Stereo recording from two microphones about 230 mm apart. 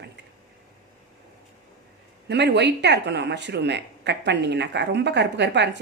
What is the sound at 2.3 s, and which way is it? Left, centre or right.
Speech, right.